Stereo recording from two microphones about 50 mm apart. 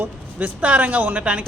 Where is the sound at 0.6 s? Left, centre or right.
Right.